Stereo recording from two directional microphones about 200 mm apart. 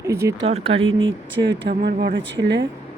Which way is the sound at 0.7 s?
80° right.